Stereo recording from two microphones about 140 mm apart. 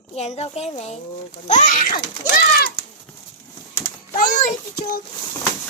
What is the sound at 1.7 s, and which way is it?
Speech, 85° left.